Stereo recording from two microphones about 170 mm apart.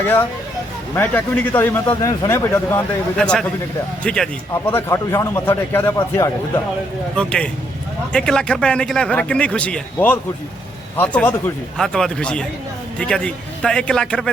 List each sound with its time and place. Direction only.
0.9 s a man's voice: 10° left (ahead or behind)
4.7 s a man's voice: 15° left (ahead or behind)